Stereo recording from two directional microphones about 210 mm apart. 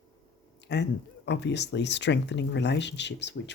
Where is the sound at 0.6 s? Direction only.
55° left (ahead or behind).